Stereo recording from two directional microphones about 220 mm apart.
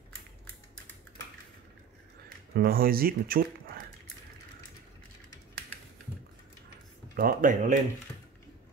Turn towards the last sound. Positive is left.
turn(degrees=-35)  # may be behind; listen again after turning